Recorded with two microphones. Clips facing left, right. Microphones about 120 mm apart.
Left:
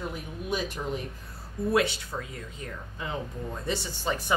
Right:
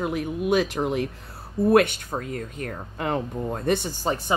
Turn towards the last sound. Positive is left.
turn(degrees=-55)  # may be behind; listen again after turning